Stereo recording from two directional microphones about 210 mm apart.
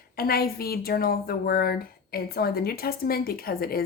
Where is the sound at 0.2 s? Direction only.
45° left (ahead or behind).